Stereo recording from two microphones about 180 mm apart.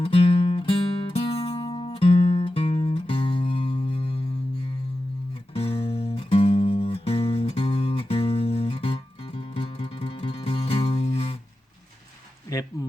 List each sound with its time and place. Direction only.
0.0 s music: 30° left (ahead or behind)
5.5 s music: 30° left (ahead or behind)